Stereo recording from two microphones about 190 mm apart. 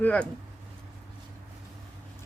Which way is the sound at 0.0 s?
5° left (ahead or behind).